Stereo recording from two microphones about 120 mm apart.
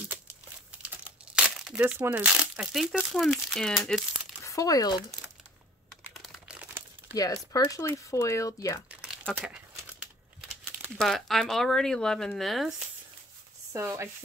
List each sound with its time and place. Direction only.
0.7 s crumpling: 10° right (ahead or behind)
3.5 s speech: centre (ahead or behind)
4.4 s speech: 25° left (ahead or behind)
6.2 s crumpling: 5° right (ahead or behind)
7.2 s speech: 30° left (ahead or behind)
11.0 s speech: centre (ahead or behind)
13.7 s chopping: 20° right (ahead or behind)